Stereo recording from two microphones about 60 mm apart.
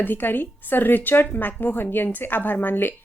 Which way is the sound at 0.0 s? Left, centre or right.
Left.